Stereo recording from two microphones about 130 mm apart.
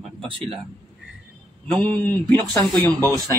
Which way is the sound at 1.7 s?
10° left (ahead or behind).